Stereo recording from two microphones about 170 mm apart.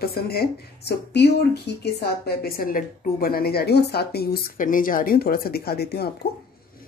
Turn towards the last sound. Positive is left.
turn(degrees=70)  # may be behind; listen again after turning